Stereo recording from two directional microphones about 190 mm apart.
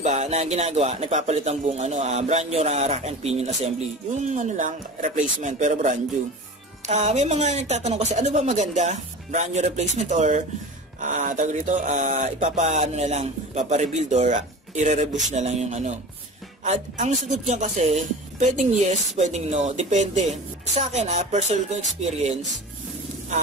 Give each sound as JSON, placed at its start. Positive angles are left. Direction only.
{"t": 0.0, "sound": "speech", "side_deg": -35}